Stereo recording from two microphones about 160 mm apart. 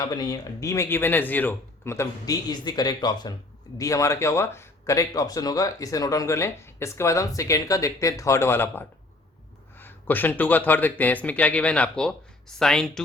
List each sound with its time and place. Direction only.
0.0 s speech: 25° left (ahead or behind); by 13.0 s 5° left (ahead or behind)